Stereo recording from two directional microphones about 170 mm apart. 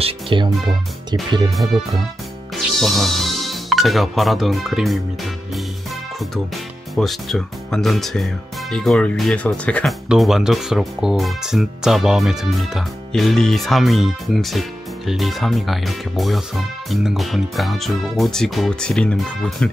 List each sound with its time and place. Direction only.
0.0 s speech: 30° right (ahead or behind)
2.8 s speech: centre (ahead or behind)